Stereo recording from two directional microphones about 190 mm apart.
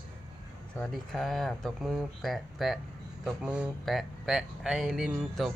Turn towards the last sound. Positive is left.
turn(degrees=0)  # may be behind; listen again after turning